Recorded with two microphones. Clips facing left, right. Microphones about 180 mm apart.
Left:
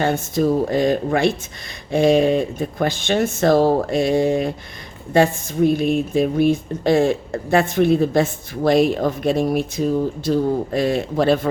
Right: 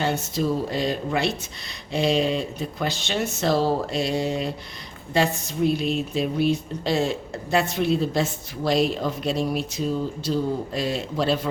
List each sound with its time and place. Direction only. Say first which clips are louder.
0.0 s a woman's voice: left 6 dB; 50° left (ahead or behind)